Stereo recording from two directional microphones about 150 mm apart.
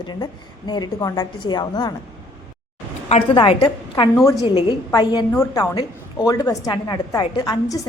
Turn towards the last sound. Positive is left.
turn(degrees=25)  # may be behind; listen again after turning